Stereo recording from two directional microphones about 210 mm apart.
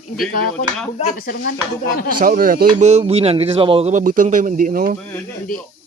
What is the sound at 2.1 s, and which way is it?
Speech, 40° right (ahead or behind).